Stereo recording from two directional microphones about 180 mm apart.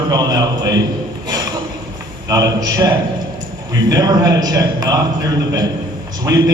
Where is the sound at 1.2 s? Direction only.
20° right (ahead or behind).